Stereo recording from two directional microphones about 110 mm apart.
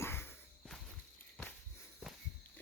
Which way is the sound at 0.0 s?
20° left (ahead or behind).